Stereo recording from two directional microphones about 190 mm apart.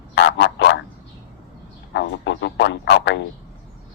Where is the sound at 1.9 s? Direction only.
70° left (ahead or behind).